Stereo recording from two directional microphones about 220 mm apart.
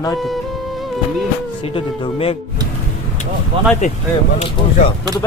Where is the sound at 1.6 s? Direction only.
25° left (ahead or behind).